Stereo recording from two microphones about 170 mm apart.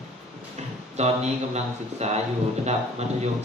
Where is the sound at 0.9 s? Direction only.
40° right (ahead or behind).